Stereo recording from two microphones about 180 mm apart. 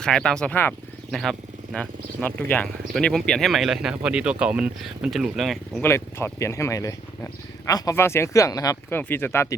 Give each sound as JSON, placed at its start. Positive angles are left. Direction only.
{"t": 0.0, "sound": "speech", "side_deg": 5}
{"t": 5.8, "sound": "speech", "side_deg": 15}